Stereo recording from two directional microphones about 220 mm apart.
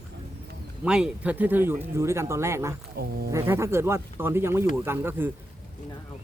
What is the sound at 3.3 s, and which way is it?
Speech, 10° right (ahead or behind).